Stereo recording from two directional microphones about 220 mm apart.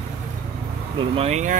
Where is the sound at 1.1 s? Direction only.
30° right (ahead or behind).